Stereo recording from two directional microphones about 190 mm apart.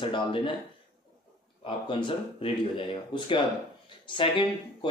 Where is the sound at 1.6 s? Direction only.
25° left (ahead or behind).